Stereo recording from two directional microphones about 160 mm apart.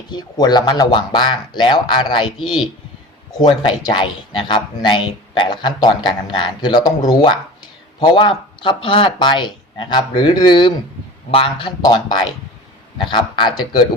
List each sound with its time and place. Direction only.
0.1 s speech: 25° left (ahead or behind)